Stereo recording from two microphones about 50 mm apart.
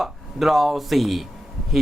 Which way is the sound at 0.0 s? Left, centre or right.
Centre.